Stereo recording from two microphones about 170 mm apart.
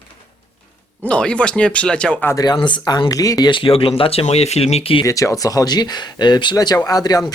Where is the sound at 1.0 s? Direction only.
5° left (ahead or behind); by 5.0 s 35° left (ahead or behind).